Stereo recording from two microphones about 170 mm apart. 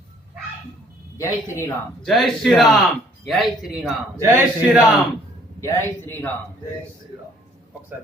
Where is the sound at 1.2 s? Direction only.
15° left (ahead or behind).